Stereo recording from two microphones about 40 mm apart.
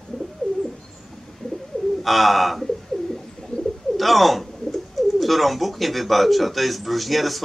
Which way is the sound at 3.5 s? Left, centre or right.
Left.